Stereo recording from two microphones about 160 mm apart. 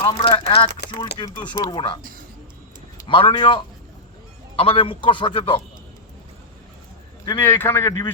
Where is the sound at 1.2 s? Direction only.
30° left (ahead or behind).